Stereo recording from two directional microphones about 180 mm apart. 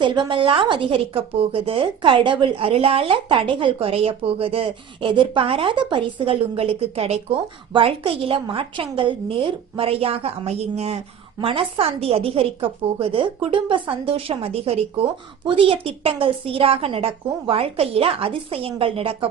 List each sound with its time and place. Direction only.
0.0 s a woman's voice: 25° right (ahead or behind)